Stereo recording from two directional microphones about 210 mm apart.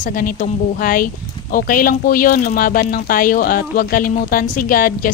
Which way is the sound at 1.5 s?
40° left (ahead or behind).